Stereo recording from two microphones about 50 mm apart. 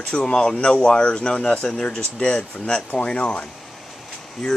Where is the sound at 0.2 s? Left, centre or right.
Centre.